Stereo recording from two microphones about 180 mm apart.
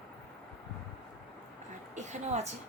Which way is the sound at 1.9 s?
40° right (ahead or behind).